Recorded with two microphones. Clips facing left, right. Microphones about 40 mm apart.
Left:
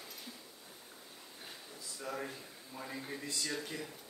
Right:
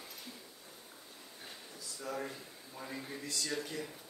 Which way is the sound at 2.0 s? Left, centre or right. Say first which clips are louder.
Right 1 dB; centre.